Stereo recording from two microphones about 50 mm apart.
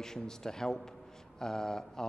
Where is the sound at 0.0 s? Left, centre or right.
Centre.